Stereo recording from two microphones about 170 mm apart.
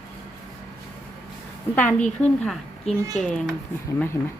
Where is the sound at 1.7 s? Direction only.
10° left (ahead or behind).